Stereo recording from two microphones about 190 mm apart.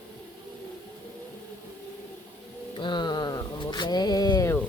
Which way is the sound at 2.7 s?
25° left (ahead or behind).